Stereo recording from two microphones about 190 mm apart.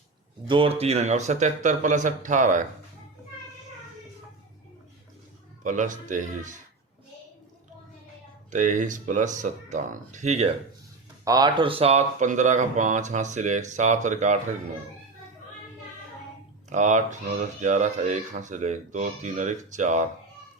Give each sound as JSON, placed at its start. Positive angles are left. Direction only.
{"t": 0.4, "sound": "speech", "side_deg": -25}
{"t": 5.6, "sound": "speech", "side_deg": -40}
{"t": 8.4, "sound": "speech", "side_deg": -40}
{"t": 11.3, "sound": "speech", "side_deg": -20}
{"t": 16.6, "sound": "speech", "side_deg": -40}